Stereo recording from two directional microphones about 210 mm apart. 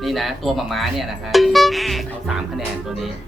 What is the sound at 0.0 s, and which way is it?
Speech, centre (ahead or behind).